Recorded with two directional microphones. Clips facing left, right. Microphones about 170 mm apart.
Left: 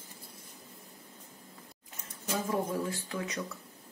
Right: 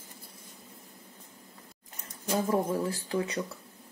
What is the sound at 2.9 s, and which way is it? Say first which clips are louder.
Speech: right 5 dB; 35° right (ahead or behind).